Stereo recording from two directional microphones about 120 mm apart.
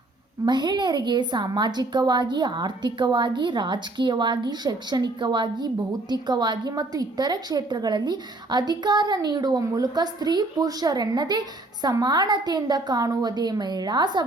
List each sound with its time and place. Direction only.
0.4 s a woman's voice: 35° right (ahead or behind)